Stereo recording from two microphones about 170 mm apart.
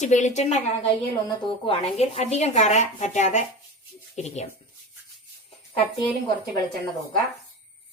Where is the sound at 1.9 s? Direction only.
40° left (ahead or behind).